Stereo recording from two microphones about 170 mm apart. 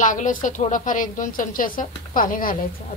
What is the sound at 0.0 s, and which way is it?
A woman's voice, 50° left (ahead or behind).